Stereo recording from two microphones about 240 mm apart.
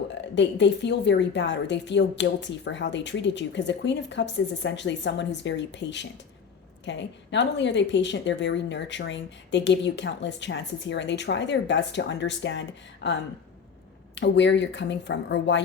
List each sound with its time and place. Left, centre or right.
0.1 s a woman's voice: left
14.2 s a woman's voice: left